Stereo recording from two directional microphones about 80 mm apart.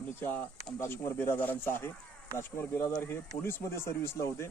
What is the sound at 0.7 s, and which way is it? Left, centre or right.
Speech, left.